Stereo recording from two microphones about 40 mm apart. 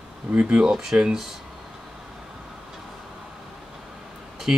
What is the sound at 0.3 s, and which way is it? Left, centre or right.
Speech, right.